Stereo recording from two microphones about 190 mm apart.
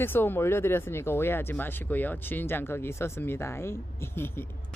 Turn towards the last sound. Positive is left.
turn(degrees=10)  # may be behind; listen again after turning